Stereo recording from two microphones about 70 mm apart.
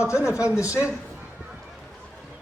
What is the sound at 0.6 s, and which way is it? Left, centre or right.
Speech, left.